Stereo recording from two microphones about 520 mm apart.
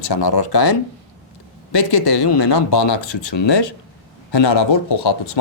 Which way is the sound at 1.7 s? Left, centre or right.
Left.